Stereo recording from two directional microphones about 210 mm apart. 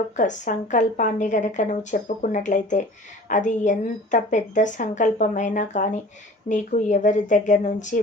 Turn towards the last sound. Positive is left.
turn(degrees=35)  # may be behind; listen again after turning